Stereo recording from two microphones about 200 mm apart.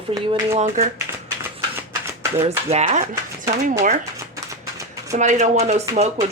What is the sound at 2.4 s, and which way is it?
Speech, 35° right (ahead or behind).